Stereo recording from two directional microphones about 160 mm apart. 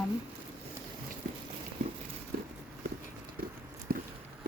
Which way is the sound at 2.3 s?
65° right (ahead or behind).